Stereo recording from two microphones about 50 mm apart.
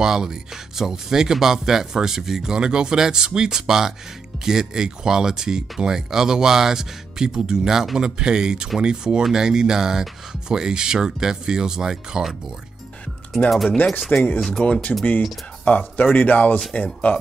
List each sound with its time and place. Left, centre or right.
0.0 s speech: centre
13.4 s speech: left